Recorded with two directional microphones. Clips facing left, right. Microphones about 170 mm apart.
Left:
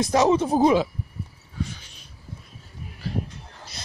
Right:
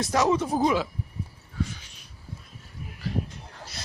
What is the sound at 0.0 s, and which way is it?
Speech, 25° left (ahead or behind).